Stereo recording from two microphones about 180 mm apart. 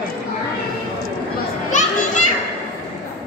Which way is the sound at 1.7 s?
45° left (ahead or behind).